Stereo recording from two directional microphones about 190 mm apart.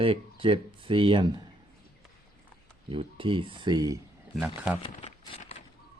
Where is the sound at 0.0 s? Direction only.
30° right (ahead or behind).